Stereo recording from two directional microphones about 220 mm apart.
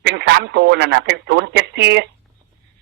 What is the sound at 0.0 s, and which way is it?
A man's voice, 50° right (ahead or behind).